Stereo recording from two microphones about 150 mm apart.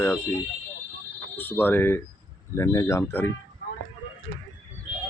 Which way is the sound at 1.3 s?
15° left (ahead or behind).